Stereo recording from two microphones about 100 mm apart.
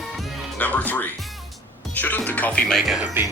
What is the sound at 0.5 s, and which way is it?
Speech, 15° left (ahead or behind).